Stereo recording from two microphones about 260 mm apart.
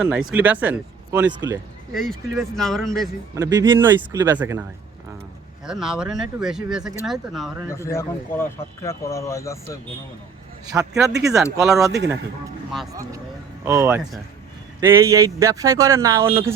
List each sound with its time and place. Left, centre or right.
0.0 s speech: centre
1.9 s speech: centre
3.3 s speech: centre
5.6 s speech: centre
7.7 s a man's voice: centre
10.7 s speech: centre
13.7 s speech: centre